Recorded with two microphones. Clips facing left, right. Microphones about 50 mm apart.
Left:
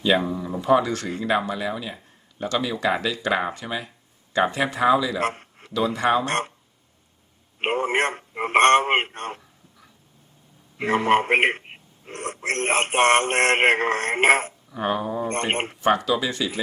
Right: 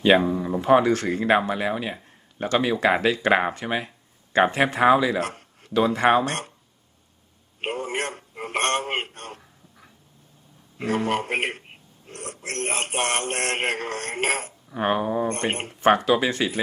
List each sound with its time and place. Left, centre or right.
0.0 s speech: right
0.3 s speech: right
0.6 s speech: right
5.2 s a sound: left
5.7 s speech: right
6.2 s speech: left
7.6 s speech: left
10.8 s speech: left
14.7 s speech: right
15.3 s speech: left
15.8 s speech: right